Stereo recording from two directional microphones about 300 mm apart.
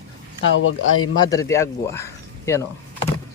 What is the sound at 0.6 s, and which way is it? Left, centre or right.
Speech, left.